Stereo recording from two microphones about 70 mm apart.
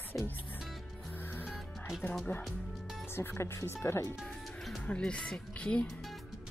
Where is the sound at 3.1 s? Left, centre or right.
Left.